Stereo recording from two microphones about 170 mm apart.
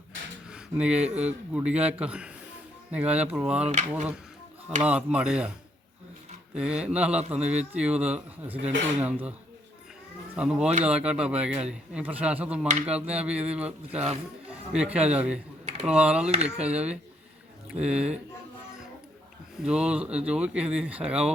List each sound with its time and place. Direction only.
0.5 s a man's voice: 5° right (ahead or behind)
3.6 s speech: 45° right (ahead or behind)
4.9 s a man's voice: 5° right (ahead or behind)
6.6 s a man's voice: 5° right (ahead or behind)
10.3 s a man's voice: 5° right (ahead or behind)
14.7 s a man's voice: 5° right (ahead or behind)
16.3 s speech: 40° right (ahead or behind)
16.6 s a man's voice: 10° right (ahead or behind)
19.6 s a man's voice: 5° right (ahead or behind)